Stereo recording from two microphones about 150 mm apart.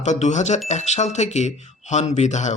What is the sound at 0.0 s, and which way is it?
Speech, 50° left (ahead or behind).